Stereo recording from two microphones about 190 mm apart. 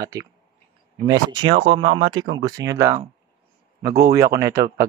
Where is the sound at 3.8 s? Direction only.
50° right (ahead or behind).